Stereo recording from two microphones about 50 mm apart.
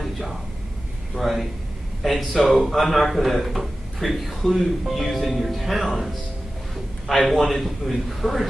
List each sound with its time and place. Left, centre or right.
1.1 s a man's voice: centre
7.1 s a man's voice: centre